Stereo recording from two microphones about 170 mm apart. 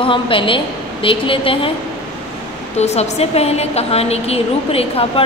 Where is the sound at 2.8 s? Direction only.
40° left (ahead or behind).